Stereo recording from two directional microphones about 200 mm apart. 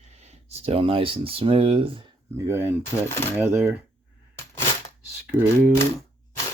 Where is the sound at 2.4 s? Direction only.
10° right (ahead or behind).